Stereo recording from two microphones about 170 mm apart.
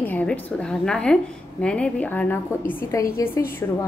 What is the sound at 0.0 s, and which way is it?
A woman's voice, 10° left (ahead or behind).